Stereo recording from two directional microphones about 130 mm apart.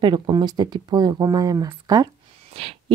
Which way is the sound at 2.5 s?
45° right (ahead or behind).